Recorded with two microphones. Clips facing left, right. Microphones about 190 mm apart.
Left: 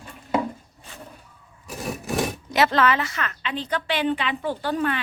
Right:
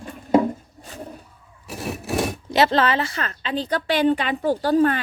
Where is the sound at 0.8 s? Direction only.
40° right (ahead or behind).